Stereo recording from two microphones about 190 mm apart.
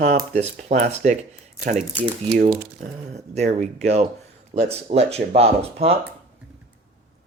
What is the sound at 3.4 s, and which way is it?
Speech, 40° right (ahead or behind).